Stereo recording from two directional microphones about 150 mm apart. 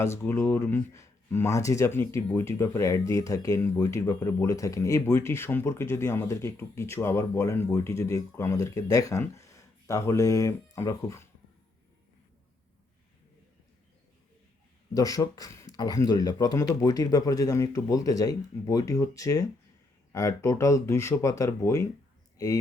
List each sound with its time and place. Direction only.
0.0 s speech: 20° left (ahead or behind)
14.9 s speech: 25° left (ahead or behind)